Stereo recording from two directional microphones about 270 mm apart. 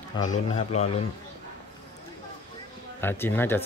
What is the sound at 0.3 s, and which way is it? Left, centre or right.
Speech, left.